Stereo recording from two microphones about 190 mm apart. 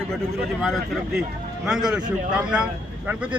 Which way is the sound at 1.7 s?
5° right (ahead or behind).